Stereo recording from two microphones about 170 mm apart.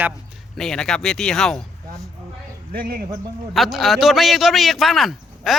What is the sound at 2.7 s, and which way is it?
Speech, 60° right (ahead or behind).